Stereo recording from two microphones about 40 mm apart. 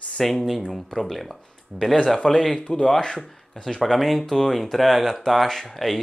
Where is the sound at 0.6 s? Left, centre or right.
Centre.